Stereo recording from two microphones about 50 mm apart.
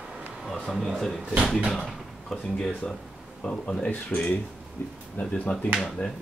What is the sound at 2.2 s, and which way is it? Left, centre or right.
Speech, centre.